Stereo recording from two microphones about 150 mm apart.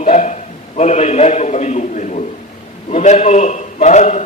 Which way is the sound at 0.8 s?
50° left (ahead or behind).